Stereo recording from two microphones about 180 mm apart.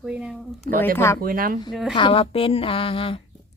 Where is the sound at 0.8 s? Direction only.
10° left (ahead or behind).